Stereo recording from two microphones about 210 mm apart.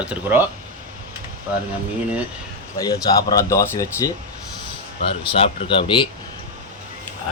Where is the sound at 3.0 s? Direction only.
15° left (ahead or behind).